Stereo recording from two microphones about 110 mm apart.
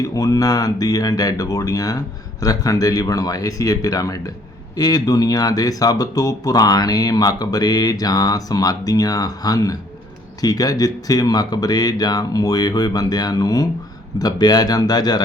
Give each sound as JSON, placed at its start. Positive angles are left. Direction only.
{"t": 0.0, "sound": "speech", "side_deg": 30}